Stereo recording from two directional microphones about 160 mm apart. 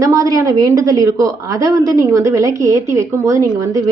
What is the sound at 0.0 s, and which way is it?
Speech, 20° right (ahead or behind).